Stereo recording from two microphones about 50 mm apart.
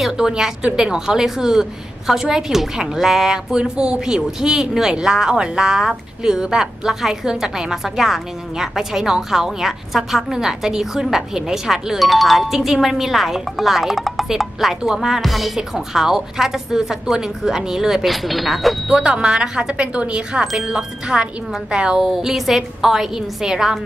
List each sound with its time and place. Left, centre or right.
0.0 s a woman's voice: centre
18.9 s a woman's voice: right